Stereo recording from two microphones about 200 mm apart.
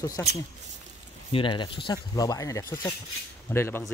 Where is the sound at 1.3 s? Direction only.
25° left (ahead or behind).